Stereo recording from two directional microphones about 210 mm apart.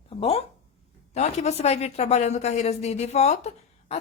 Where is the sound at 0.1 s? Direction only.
30° left (ahead or behind).